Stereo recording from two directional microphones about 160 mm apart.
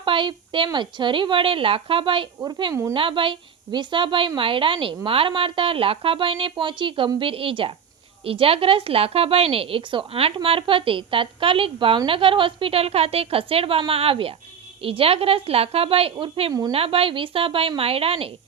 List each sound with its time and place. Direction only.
0.0 s a woman's voice: 30° right (ahead or behind)
16.7 s a woman's voice: 35° right (ahead or behind)